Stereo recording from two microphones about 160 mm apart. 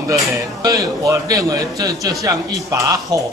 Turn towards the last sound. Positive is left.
turn(degrees=-20)  # may be behind; listen again after turning